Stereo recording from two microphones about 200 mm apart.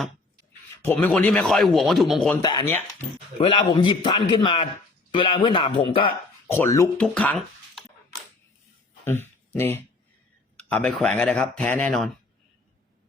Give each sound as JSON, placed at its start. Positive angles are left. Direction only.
{"t": 0.9, "sound": "speech", "side_deg": 10}
{"t": 2.4, "sound": "speech", "side_deg": 20}
{"t": 6.5, "sound": "speech", "side_deg": 15}
{"t": 9.0, "sound": "speech", "side_deg": 10}